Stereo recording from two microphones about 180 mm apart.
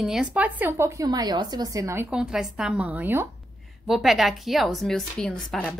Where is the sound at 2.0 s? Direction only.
5° right (ahead or behind).